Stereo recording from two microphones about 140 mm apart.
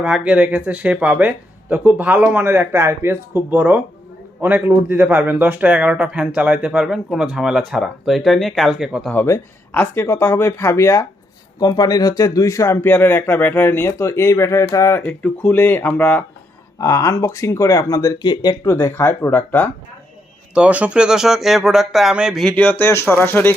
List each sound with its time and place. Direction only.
0.0 s a man's voice: 10° right (ahead or behind)
9.1 s speech: 15° left (ahead or behind)
16.7 s speech: 25° left (ahead or behind)
20.5 s speech: 10° right (ahead or behind)
22.4 s speech: 10° left (ahead or behind)